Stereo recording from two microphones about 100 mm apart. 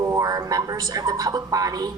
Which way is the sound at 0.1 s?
35° right (ahead or behind).